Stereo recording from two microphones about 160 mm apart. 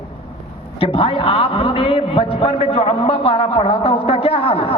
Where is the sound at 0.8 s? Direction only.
35° left (ahead or behind).